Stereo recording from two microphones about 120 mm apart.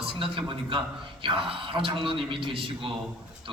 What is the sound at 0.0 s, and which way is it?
Speech, 50° right (ahead or behind).